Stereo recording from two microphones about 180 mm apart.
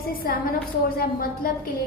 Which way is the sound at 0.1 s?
55° left (ahead or behind).